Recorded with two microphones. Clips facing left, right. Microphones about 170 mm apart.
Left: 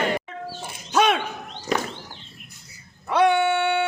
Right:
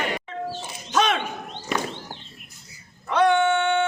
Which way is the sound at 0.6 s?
10° left (ahead or behind).